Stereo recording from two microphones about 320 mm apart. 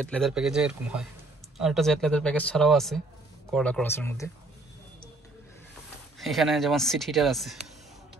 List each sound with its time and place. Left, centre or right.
0.0 s speech: centre
6.1 s speech: centre